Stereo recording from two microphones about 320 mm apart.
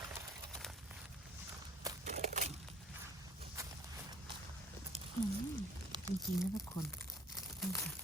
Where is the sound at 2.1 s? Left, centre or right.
Right.